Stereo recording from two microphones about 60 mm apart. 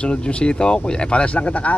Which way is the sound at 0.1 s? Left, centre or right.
Centre.